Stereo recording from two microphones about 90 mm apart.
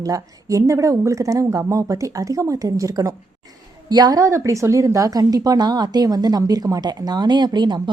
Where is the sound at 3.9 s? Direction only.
50° right (ahead or behind).